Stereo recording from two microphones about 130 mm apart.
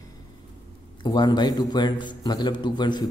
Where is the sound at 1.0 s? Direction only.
35° left (ahead or behind).